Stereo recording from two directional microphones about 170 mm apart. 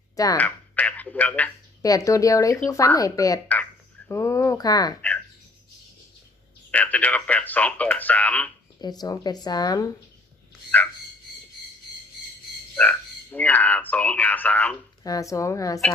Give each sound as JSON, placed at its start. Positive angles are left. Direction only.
{"t": 0.1, "sound": "a sound", "side_deg": 20}
{"t": 0.4, "sound": "radio", "side_deg": 10}
{"t": 1.8, "sound": "speech", "side_deg": 20}
{"t": 6.7, "sound": "speech", "side_deg": 10}
{"t": 8.8, "sound": "speech", "side_deg": 25}
{"t": 10.7, "sound": "speech", "side_deg": 10}
{"t": 12.7, "sound": "speech", "side_deg": 10}
{"t": 15.0, "sound": "speech", "side_deg": 20}